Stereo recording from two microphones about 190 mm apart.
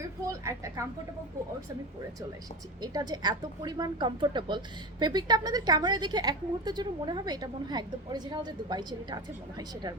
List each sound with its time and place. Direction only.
0.3 s a woman's voice: 15° right (ahead or behind)
2.8 s a woman's voice: 20° right (ahead or behind)